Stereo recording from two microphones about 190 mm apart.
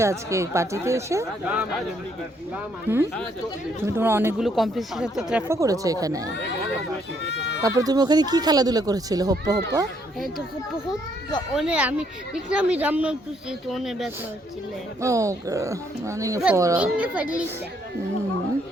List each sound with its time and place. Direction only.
0.0 s speech: 15° right (ahead or behind)
2.9 s speech: 10° right (ahead or behind)
4.4 s speech: centre (ahead or behind)
5.5 s speech: 15° right (ahead or behind)
7.3 s goat: 65° left (ahead or behind)
7.6 s speech: 20° right (ahead or behind)
11.5 s speech: 5° right (ahead or behind)
15.0 s speech: 15° right (ahead or behind)